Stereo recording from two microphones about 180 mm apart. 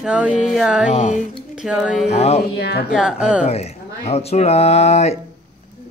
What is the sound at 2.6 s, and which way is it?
Speech, 65° left (ahead or behind).